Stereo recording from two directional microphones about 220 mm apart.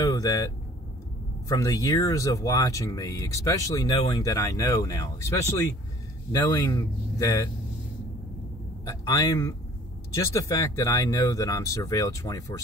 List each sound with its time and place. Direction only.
0.0 s vehicle: 15° left (ahead or behind)
1.5 s speech: 15° left (ahead or behind)
8.8 s speech: 15° left (ahead or behind)